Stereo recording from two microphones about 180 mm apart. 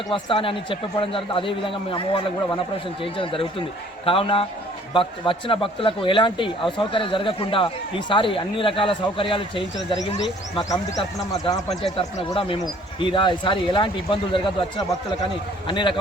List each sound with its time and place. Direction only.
0.1 s speech: 30° left (ahead or behind)
11.8 s speech: 30° left (ahead or behind)
15.6 s speech: 25° left (ahead or behind)